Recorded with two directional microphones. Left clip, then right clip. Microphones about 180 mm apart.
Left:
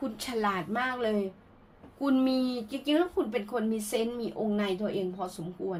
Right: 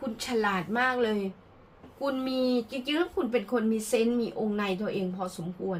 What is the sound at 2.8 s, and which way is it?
Speech, 30° left (ahead or behind).